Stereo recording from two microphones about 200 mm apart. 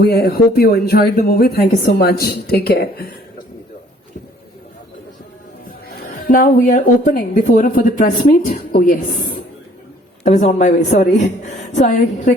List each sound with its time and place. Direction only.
0.0 s speech: 50° left (ahead or behind)
6.0 s a woman's voice: 45° left (ahead or behind)